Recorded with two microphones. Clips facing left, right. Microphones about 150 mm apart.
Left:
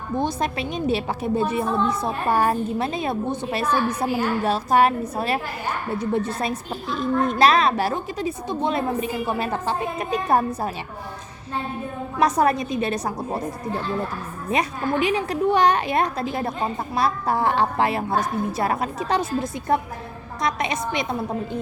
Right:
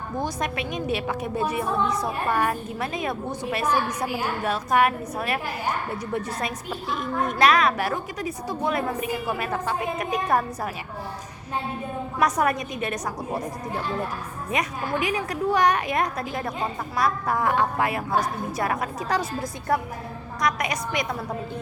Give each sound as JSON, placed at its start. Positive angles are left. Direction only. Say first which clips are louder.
{"t": 0.2, "sound": "a woman's voice", "louder": "left 3 dB", "side_deg": 30}
{"t": 12.2, "sound": "a woman's voice", "louder": "left 4 dB", "side_deg": 30}
{"t": 14.5, "sound": "a woman's voice", "louder": "left 4 dB", "side_deg": 30}